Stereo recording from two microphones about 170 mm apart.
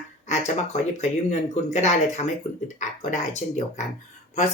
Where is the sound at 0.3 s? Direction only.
45° left (ahead or behind).